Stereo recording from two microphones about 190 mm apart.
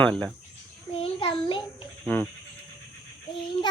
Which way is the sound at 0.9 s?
30° left (ahead or behind).